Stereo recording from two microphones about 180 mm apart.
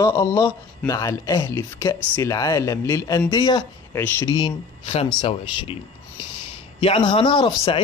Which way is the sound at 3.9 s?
15° left (ahead or behind).